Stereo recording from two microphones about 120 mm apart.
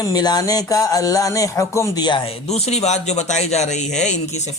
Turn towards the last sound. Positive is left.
turn(degrees=70)  # may be behind; listen again after turning